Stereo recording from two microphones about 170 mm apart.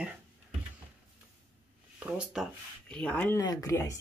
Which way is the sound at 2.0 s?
5° right (ahead or behind).